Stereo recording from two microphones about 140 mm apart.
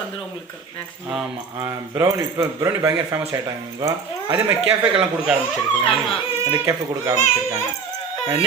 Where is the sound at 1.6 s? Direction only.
20° right (ahead or behind).